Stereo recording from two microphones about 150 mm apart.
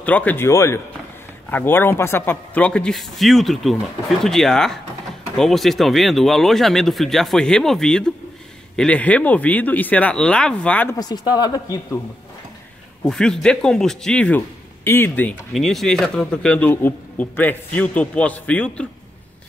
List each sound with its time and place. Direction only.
0.0 s speech: 10° left (ahead or behind)
11.0 s speech: 25° left (ahead or behind)
13.0 s speech: 5° left (ahead or behind)
15.5 s speech: centre (ahead or behind)